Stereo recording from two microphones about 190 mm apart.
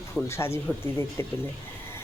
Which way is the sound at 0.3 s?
15° left (ahead or behind).